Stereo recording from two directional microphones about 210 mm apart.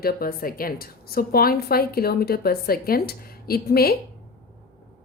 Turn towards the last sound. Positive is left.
turn(degrees=45)  # may be behind; listen again after turning